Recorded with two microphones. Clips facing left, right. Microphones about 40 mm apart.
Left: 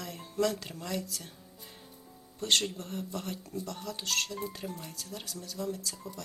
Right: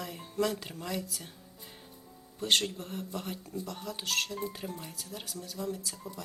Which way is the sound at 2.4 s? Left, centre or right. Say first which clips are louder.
Right 1 dB; centre.